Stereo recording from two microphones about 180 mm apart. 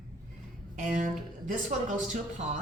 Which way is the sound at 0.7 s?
45° right (ahead or behind).